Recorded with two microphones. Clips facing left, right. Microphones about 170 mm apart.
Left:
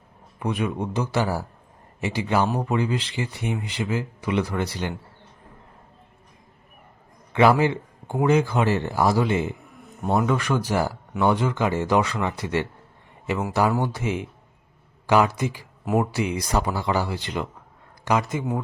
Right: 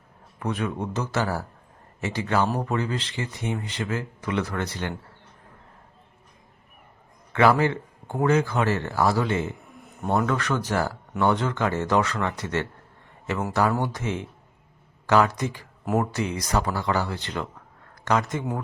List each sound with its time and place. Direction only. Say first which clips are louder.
0.3 s speech: left 2 dB; 15° left (ahead or behind)
7.3 s speech: left 2 dB; 15° left (ahead or behind)